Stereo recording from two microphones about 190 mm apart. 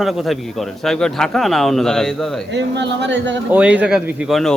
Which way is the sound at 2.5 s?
65° right (ahead or behind).